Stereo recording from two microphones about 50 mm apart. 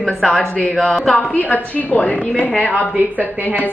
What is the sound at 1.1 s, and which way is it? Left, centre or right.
A woman's voice, left.